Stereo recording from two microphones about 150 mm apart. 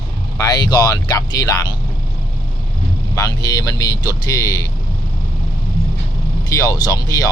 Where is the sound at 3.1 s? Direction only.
25° left (ahead or behind).